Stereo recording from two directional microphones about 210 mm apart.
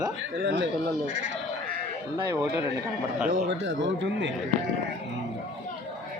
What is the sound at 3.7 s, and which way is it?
Speech, 60° right (ahead or behind).